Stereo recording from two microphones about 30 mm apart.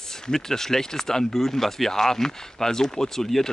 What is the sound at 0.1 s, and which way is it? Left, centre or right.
Speech, centre.